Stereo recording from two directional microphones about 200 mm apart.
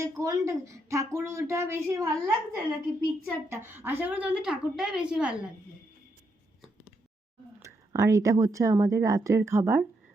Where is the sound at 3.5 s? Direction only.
10° right (ahead or behind).